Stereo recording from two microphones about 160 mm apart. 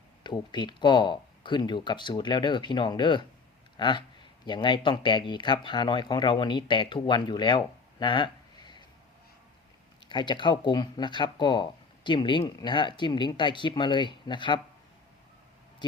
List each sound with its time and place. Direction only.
0.2 s speech: 30° left (ahead or behind)
10.1 s speech: 30° left (ahead or behind)